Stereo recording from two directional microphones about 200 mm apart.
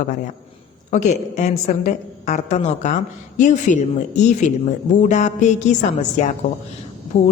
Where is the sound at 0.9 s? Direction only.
35° left (ahead or behind).